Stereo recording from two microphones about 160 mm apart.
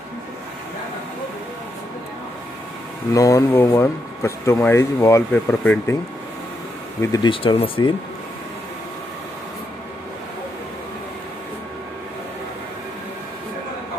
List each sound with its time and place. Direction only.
3.1 s speech: 20° left (ahead or behind)
7.2 s speech: 35° left (ahead or behind)